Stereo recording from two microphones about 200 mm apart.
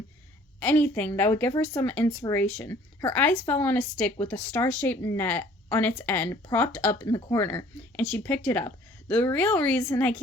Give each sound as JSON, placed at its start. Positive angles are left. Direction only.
{"t": 0.6, "sound": "speech", "side_deg": 10}